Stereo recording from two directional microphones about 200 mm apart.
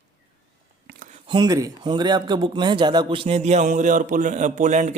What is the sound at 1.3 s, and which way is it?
A man's voice, 20° right (ahead or behind).